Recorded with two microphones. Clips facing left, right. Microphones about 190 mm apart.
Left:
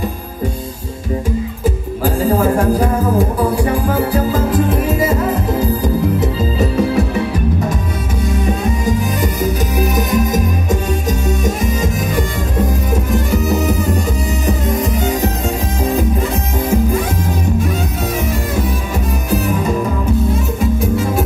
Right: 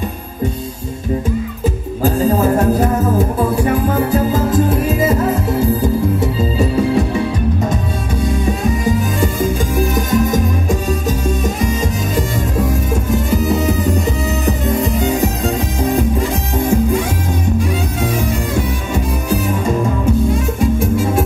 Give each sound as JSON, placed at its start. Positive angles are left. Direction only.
{"t": 5.3, "sound": "music", "side_deg": -25}
{"t": 9.2, "sound": "music", "side_deg": -25}
{"t": 14.8, "sound": "music", "side_deg": -30}